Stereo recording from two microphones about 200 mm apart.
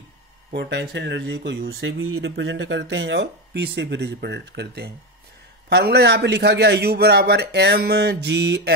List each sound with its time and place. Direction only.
0.5 s speech: 60° right (ahead or behind)